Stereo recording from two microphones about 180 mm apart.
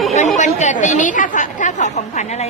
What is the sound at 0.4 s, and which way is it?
A woman's voice, 40° left (ahead or behind).